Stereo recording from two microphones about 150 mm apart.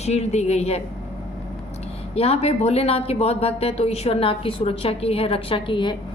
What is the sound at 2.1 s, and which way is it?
A woman's voice, 40° left (ahead or behind).